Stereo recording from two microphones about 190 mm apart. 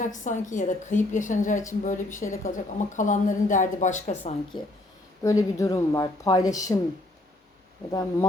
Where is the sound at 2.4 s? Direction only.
40° left (ahead or behind).